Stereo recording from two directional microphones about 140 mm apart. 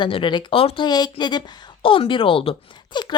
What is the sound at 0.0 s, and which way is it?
Speech, 35° left (ahead or behind).